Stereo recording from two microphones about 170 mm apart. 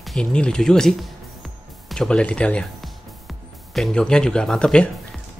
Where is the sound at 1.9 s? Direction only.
5° left (ahead or behind).